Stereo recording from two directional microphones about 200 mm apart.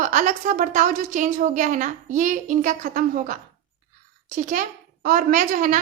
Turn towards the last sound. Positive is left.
turn(degrees=-40)  # may be behind; listen again after turning